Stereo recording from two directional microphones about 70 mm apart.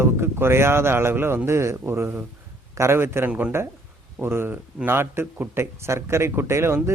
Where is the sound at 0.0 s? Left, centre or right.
Right.